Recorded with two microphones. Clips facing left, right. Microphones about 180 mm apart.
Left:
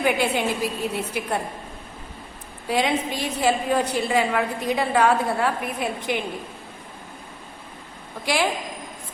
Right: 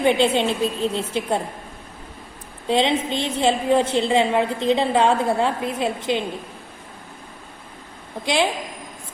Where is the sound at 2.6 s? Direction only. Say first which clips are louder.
Right 3 dB; 25° right (ahead or behind).